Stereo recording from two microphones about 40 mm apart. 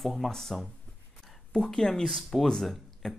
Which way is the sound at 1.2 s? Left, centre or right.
Centre.